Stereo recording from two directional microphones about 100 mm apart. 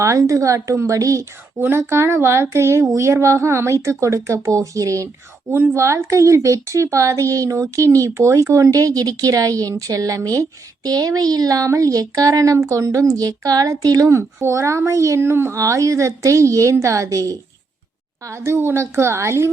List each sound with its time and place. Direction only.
0.0 s speech: 30° right (ahead or behind)
1.2 s speech: 20° right (ahead or behind)
5.5 s speech: 20° right (ahead or behind)